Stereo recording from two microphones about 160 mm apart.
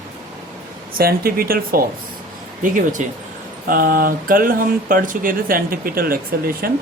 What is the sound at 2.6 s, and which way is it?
Speech, 55° right (ahead or behind).